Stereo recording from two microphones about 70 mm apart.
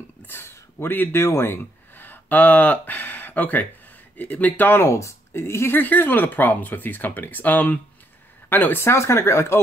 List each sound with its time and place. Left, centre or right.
0.3 s speech: left
4.8 s speech: left
8.8 s speech: left